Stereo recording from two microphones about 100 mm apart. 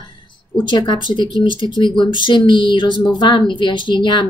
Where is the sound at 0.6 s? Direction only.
50° left (ahead or behind).